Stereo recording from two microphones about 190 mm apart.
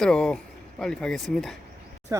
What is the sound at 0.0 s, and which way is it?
Speech, 5° left (ahead or behind).